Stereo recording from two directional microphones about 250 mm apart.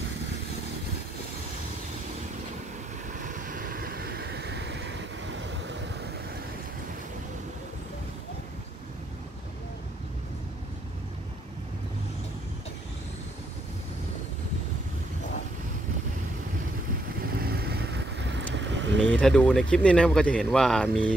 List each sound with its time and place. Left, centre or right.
3.2 s vehicle: right
17.4 s vehicle: right
18.9 s speech: centre